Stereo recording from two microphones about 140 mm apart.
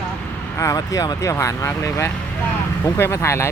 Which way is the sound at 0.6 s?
25° left (ahead or behind).